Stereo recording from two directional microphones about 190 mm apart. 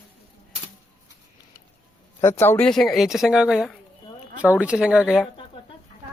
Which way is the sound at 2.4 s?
10° left (ahead or behind).